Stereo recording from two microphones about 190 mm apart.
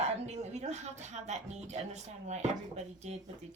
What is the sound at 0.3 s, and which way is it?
A woman's voice, 35° right (ahead or behind).